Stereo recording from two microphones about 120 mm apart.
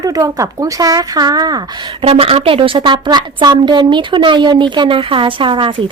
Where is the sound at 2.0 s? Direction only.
50° right (ahead or behind).